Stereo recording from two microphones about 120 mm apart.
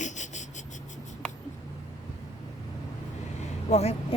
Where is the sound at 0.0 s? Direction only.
90° left.